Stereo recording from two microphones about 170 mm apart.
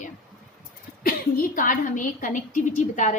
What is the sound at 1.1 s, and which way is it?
Speech, 55° left (ahead or behind).